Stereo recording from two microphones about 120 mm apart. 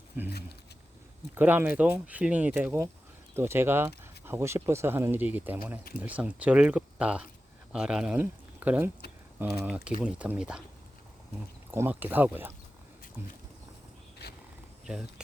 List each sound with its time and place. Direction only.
0.1 s speech: 20° right (ahead or behind)
1.4 s speech: 15° right (ahead or behind)
11.7 s speech: 20° right (ahead or behind)